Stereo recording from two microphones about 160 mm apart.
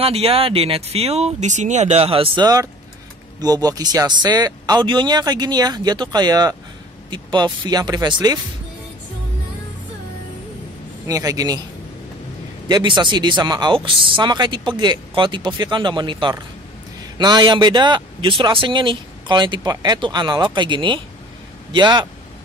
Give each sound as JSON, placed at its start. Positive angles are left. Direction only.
{"t": 0.0, "sound": "speech", "side_deg": -35}
{"t": 11.1, "sound": "speech", "side_deg": -20}
{"t": 12.6, "sound": "speech", "side_deg": -30}